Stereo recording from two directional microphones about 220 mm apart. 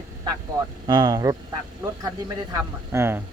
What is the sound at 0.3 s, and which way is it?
Speech, 20° right (ahead or behind).